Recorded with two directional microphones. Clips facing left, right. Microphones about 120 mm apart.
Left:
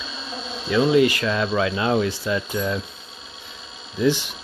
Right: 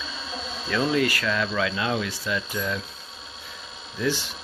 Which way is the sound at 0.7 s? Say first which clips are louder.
Left 6 dB; 15° left (ahead or behind).